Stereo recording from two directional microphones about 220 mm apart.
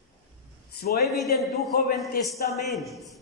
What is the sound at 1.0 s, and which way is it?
Speech, centre (ahead or behind).